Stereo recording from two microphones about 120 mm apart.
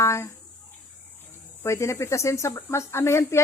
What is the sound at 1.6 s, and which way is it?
Crowing, 25° left (ahead or behind).